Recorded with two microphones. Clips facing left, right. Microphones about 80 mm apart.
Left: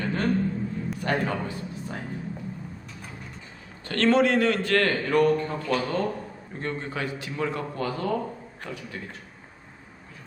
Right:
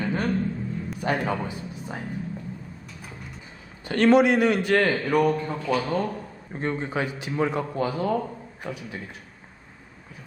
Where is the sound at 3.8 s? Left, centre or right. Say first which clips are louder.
Right 3 dB; centre.